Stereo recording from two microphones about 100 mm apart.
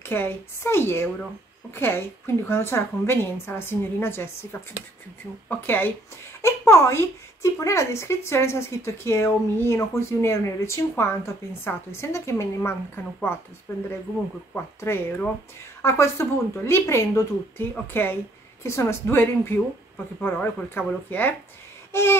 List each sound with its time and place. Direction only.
0.0 s speech: 20° left (ahead or behind)
14.5 s speech: 25° left (ahead or behind)